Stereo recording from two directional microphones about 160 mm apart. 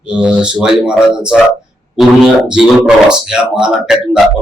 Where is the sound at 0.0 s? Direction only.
5° right (ahead or behind).